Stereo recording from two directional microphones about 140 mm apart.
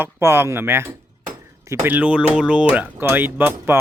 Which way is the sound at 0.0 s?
15° right (ahead or behind).